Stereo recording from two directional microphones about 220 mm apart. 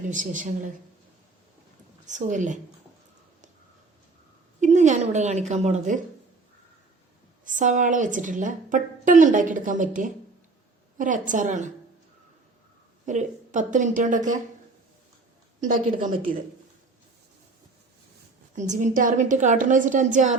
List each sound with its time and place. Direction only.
0.1 s a woman's voice: 35° right (ahead or behind)
2.0 s a woman's voice: 35° right (ahead or behind)
4.6 s a woman's voice: 35° right (ahead or behind)
7.4 s a woman's voice: 35° right (ahead or behind)
13.1 s a woman's voice: 35° right (ahead or behind)
15.6 s a woman's voice: 35° right (ahead or behind)
18.5 s a woman's voice: 35° right (ahead or behind)